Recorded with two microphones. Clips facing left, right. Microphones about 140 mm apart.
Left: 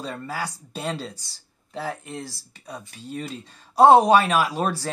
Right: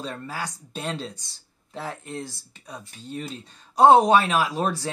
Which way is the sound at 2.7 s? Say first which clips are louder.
Left 1 dB; 5° left (ahead or behind).